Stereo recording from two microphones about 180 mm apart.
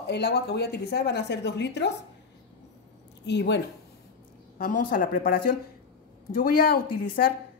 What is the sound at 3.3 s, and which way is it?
Speech, 70° left (ahead or behind).